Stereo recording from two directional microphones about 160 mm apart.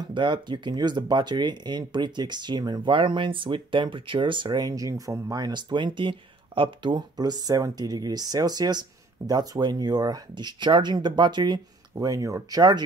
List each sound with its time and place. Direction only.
0.1 s speech: 30° right (ahead or behind)